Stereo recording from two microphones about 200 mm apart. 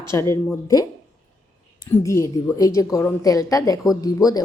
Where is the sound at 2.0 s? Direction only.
15° left (ahead or behind).